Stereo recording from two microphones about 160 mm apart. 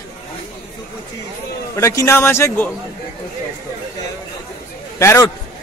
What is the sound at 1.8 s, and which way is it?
Speech, 20° left (ahead or behind).